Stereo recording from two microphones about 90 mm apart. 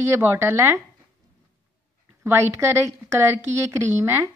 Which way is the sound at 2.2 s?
30° right (ahead or behind).